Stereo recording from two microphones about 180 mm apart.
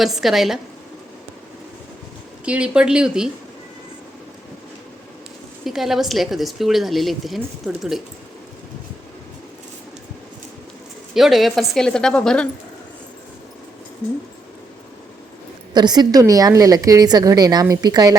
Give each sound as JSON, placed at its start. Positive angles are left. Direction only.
{"t": 0.0, "sound": "a woman's voice", "side_deg": 0}
{"t": 2.4, "sound": "a woman's voice", "side_deg": -5}
{"t": 5.6, "sound": "a woman's voice", "side_deg": 0}
{"t": 11.1, "sound": "a woman's voice", "side_deg": 0}
{"t": 15.7, "sound": "a woman's voice", "side_deg": -25}